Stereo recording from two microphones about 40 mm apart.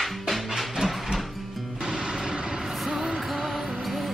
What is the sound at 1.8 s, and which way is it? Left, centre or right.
Music, centre.